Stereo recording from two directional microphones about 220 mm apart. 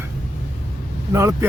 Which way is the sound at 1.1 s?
15° right (ahead or behind).